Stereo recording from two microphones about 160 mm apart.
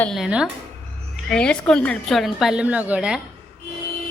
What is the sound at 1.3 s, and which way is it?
A woman's voice, 5° left (ahead or behind).